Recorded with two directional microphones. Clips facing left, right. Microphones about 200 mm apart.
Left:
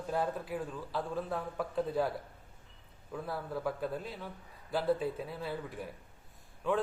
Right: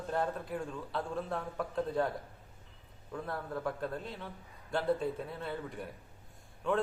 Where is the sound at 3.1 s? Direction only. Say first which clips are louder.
Even; 5° left (ahead or behind).